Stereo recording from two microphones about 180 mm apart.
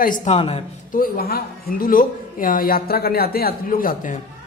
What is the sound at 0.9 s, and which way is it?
A woman's voice, 55° left (ahead or behind).